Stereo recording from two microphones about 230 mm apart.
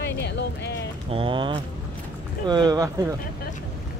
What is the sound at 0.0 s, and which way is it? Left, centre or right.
Music, left.